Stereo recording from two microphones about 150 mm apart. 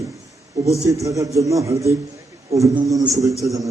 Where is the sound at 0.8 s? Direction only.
20° right (ahead or behind).